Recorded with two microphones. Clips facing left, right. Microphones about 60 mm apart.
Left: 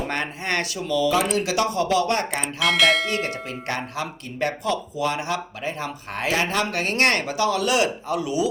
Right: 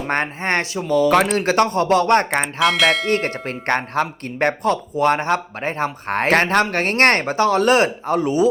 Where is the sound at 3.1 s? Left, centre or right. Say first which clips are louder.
Right 6 dB; right.